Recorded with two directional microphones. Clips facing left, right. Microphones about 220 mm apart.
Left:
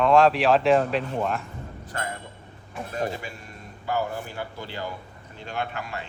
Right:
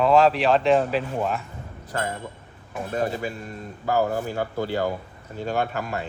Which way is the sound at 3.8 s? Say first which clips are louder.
Right 5 dB; 40° right (ahead or behind).